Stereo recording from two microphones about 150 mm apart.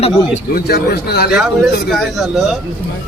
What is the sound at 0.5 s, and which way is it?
Speech, 90° left.